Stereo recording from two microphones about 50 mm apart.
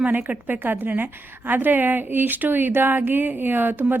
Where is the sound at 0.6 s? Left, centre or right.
Right.